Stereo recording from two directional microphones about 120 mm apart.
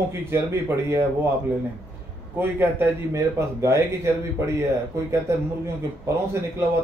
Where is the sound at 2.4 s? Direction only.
20° right (ahead or behind).